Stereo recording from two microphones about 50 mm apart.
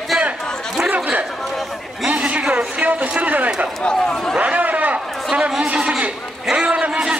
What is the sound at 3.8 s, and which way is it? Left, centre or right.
Speech, centre.